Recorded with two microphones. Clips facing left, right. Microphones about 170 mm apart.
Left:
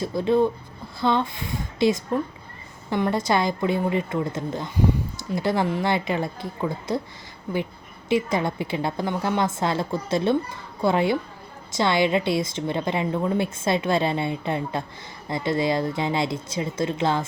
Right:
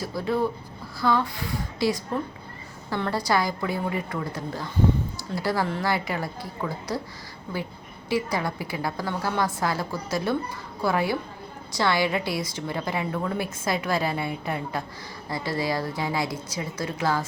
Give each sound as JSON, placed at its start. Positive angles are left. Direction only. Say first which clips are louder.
{"t": 0.0, "sound": "a woman's voice", "louder": "left 5 dB", "side_deg": 20}
{"t": 8.1, "sound": "a woman's voice", "louder": "left 4 dB", "side_deg": 20}